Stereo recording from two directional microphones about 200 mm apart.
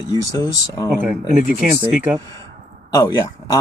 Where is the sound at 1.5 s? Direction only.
10° right (ahead or behind).